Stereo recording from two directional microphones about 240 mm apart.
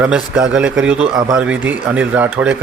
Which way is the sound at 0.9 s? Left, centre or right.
Right.